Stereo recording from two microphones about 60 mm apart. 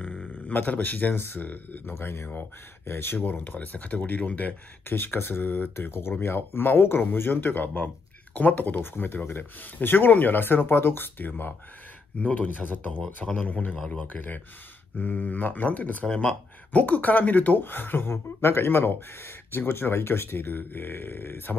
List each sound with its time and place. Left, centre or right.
0.0 s a sound: left
0.5 s speech: left
1.9 s speech: left
13.7 s a man's voice: centre
14.0 s speech: left